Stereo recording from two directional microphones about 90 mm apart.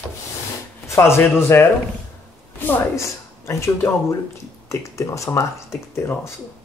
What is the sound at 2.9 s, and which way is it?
Speech, 35° left (ahead or behind).